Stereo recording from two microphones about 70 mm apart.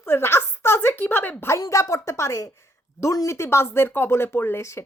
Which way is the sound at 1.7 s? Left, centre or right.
Left.